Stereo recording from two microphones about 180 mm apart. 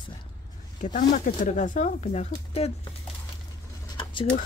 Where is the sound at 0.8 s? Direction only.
45° left (ahead or behind).